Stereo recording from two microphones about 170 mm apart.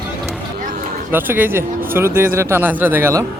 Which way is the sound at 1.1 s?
10° right (ahead or behind).